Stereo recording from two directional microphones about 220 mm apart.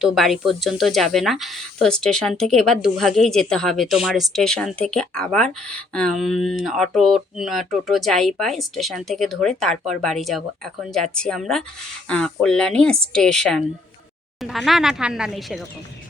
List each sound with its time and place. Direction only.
0.0 s speech: centre (ahead or behind)